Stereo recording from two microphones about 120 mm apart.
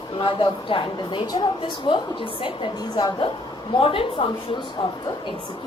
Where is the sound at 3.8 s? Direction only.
50° left (ahead or behind).